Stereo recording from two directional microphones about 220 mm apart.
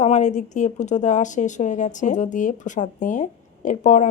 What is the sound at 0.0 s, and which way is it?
Speech, 30° left (ahead or behind).